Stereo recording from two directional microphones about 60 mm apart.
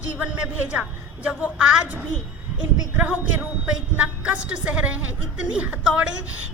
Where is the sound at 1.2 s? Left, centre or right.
Right.